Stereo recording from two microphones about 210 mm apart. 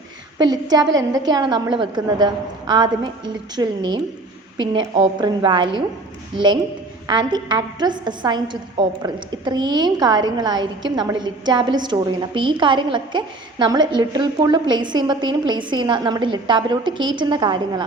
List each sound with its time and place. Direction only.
0.3 s a woman's voice: 20° right (ahead or behind)